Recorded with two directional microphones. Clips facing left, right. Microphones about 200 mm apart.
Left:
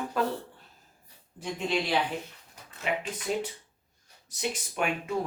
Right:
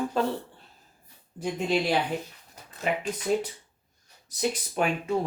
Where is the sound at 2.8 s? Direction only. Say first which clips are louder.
Right 3 dB; 40° right (ahead or behind).